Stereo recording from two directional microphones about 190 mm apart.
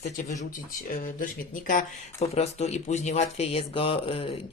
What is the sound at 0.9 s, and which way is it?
Speech, 45° left (ahead or behind).